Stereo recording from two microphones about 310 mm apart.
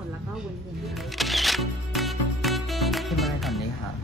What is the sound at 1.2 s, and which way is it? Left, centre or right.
Music, centre.